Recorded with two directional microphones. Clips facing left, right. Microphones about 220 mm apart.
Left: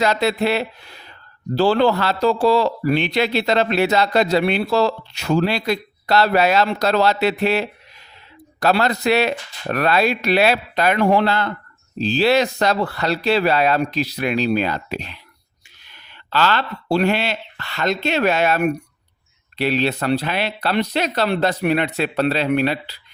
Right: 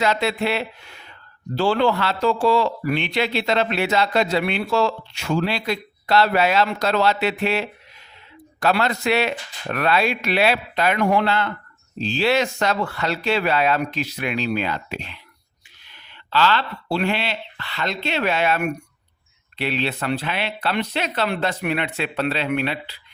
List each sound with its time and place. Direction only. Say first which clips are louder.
0.0 s speech: left 3 dB; 40° left (ahead or behind)